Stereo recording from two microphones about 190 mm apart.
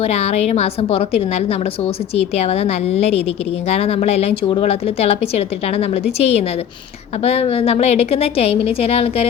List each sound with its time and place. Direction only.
0.0 s a woman's voice: 35° left (ahead or behind)